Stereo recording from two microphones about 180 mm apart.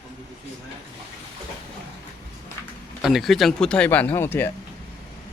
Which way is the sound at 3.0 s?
Centre (ahead or behind).